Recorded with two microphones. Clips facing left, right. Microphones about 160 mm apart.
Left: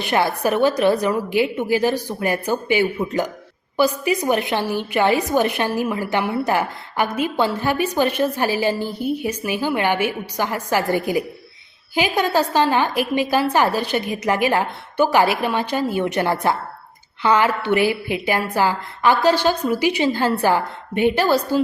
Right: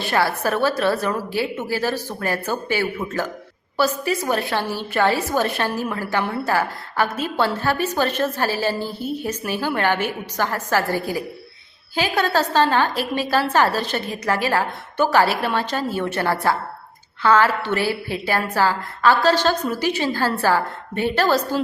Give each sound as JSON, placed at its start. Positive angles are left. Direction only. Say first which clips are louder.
{"t": 0.0, "sound": "a woman's voice", "louder": "left 2 dB", "side_deg": 20}